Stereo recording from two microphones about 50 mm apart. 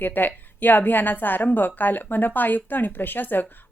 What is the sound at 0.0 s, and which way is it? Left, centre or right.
A woman's voice, left.